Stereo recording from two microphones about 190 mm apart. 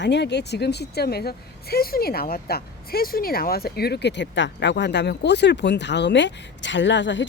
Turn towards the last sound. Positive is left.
turn(degrees=70)  # may be behind; listen again after turning